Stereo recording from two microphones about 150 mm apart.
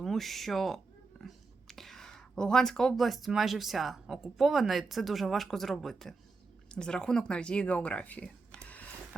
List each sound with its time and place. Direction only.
0.0 s speech: centre (ahead or behind)